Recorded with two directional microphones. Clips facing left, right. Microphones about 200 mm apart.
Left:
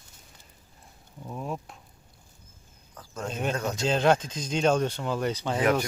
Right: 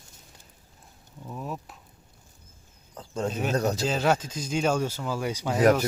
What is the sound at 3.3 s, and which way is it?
Speech, 5° right (ahead or behind).